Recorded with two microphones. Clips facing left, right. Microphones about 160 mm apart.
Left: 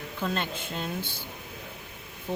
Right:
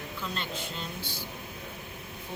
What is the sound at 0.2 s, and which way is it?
Speech, 50° left (ahead or behind).